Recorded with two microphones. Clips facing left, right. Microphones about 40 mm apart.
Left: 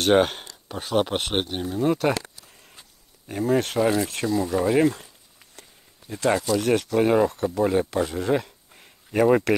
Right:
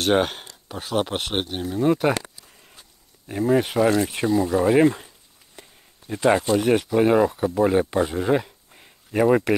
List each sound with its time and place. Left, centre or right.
0.0 s speech: centre
5.6 s a sound: right
6.6 s speech: centre